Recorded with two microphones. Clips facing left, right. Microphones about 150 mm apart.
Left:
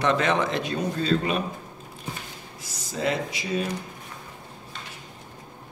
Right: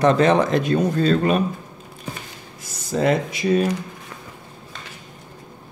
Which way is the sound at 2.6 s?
50° right (ahead or behind).